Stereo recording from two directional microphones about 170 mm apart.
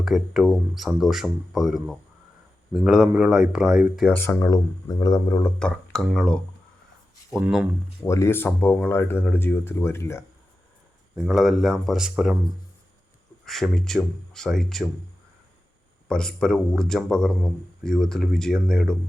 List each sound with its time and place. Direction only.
0.0 s speech: centre (ahead or behind)
4.1 s speech: 15° left (ahead or behind)
5.5 s speech: 5° left (ahead or behind)
7.3 s speech: 5° right (ahead or behind)
8.0 s speech: 15° left (ahead or behind)
11.1 s speech: centre (ahead or behind)
13.4 s speech: centre (ahead or behind)
16.0 s speech: 5° left (ahead or behind)